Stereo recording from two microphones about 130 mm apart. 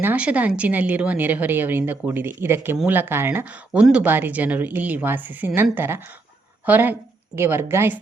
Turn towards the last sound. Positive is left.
turn(degrees=-20)  # may be behind; listen again after turning